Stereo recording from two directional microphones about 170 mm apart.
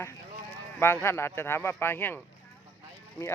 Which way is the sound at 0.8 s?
15° left (ahead or behind).